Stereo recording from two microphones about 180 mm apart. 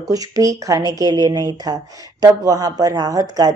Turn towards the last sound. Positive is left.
turn(degrees=-20)  # may be behind; listen again after turning